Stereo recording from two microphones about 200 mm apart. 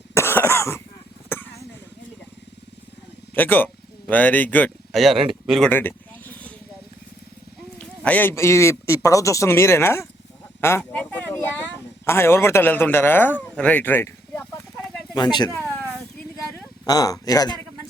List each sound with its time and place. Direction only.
0.1 s cough: 10° left (ahead or behind)
1.3 s a sound: 10° left (ahead or behind)
3.3 s speech: 10° left (ahead or behind)
7.8 s a man's voice: 10° left (ahead or behind)
10.6 s a sound: 10° left (ahead or behind)
15.1 s speech: 20° left (ahead or behind)
16.8 s a man's voice: 20° left (ahead or behind)